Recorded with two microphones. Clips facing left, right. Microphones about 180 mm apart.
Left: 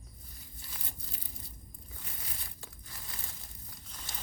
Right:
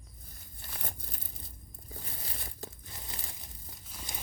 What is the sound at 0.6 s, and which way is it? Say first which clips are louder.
Crumpling: right 6 dB; 55° right (ahead or behind).